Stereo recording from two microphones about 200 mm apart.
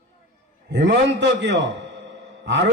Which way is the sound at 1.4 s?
65° right (ahead or behind).